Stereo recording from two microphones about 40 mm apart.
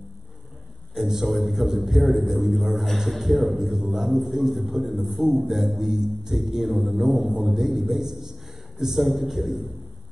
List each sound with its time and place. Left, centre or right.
0.9 s a man's voice: centre